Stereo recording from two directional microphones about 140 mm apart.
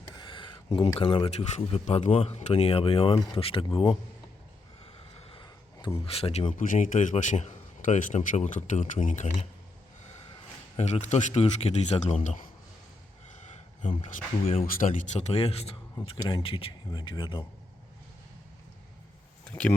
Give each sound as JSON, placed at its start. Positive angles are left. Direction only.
{"t": 0.2, "sound": "speech", "side_deg": 35}
{"t": 5.3, "sound": "a sound", "side_deg": 35}
{"t": 6.1, "sound": "speech", "side_deg": 45}
{"t": 6.6, "sound": "a man's voice", "side_deg": 70}
{"t": 10.8, "sound": "speech", "side_deg": 50}
{"t": 14.0, "sound": "speech", "side_deg": 45}
{"t": 14.8, "sound": "speech", "side_deg": 70}
{"t": 19.5, "sound": "speech", "side_deg": 10}